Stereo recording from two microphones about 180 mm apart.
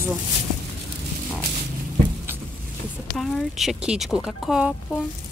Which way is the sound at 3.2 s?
Centre (ahead or behind).